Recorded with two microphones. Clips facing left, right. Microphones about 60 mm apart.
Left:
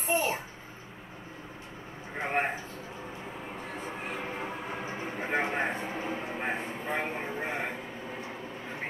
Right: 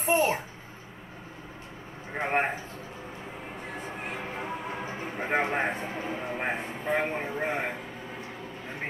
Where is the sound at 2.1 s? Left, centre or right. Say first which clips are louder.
Right 3 dB; right.